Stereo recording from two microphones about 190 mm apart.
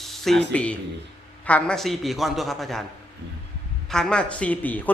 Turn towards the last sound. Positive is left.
turn(degrees=10)  # may be behind; listen again after turning